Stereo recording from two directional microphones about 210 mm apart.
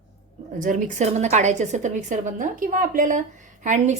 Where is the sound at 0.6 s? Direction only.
40° right (ahead or behind).